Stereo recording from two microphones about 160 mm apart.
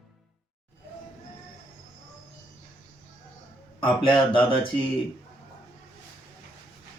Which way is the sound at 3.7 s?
30° left (ahead or behind).